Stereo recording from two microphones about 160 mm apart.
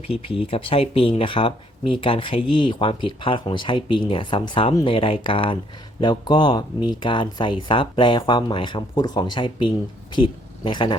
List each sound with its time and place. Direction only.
0.1 s speech: 35° left (ahead or behind)